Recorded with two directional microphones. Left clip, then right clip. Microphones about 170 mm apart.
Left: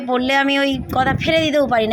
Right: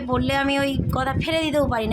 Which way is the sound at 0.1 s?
20° left (ahead or behind).